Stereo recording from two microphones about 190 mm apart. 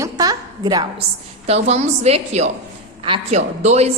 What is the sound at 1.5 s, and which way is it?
A woman's voice, 35° right (ahead or behind).